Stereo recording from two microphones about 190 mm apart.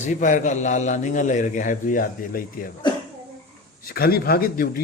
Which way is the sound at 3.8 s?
55° left (ahead or behind).